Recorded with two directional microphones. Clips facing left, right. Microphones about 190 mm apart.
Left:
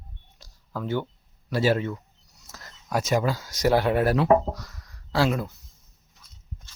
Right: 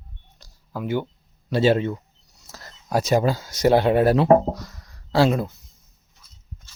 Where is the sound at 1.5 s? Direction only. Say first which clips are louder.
Right 4 dB; 25° right (ahead or behind).